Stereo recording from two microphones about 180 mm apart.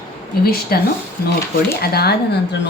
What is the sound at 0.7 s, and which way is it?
A woman's voice, 55° left (ahead or behind).